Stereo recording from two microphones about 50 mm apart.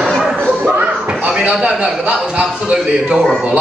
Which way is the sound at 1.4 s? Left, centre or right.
Centre.